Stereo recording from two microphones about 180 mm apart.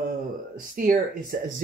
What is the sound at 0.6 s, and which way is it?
Speech, 50° right (ahead or behind).